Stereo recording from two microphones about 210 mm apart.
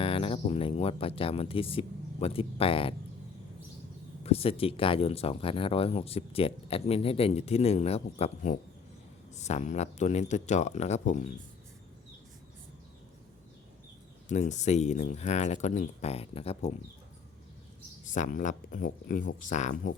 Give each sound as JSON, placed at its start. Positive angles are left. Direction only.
{"t": 0.0, "sound": "speech", "side_deg": 25}
{"t": 4.2, "sound": "speech", "side_deg": 30}
{"t": 14.3, "sound": "speech", "side_deg": 35}
{"t": 18.0, "sound": "speech", "side_deg": 35}